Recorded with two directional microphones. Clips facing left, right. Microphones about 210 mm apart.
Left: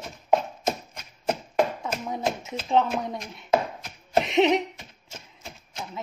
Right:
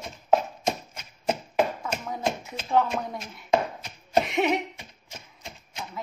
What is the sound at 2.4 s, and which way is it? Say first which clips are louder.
Speech: left 1 dB; 20° left (ahead or behind).